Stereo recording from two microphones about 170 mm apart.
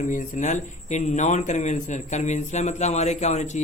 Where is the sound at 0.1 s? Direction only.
45° left (ahead or behind).